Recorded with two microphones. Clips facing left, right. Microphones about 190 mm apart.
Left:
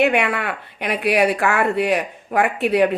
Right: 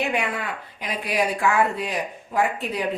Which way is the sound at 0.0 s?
70° left (ahead or behind).